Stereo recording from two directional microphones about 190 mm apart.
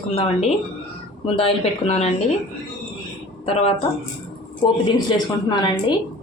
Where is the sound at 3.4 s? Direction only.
30° left (ahead or behind).